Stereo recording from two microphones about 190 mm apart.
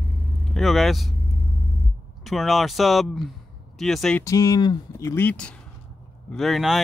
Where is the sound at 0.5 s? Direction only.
Centre (ahead or behind).